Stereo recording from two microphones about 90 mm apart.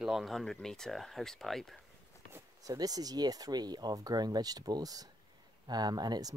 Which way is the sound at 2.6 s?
45° right (ahead or behind).